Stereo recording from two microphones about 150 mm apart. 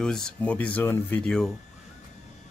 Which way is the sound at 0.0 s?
5° left (ahead or behind).